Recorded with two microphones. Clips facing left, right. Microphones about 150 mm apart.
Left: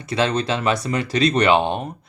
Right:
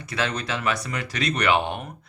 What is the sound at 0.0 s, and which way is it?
Speech, 25° left (ahead or behind).